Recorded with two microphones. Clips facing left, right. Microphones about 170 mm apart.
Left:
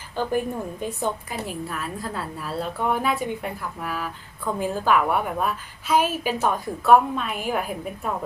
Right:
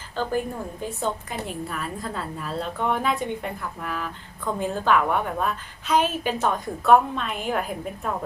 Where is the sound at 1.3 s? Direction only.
Centre (ahead or behind).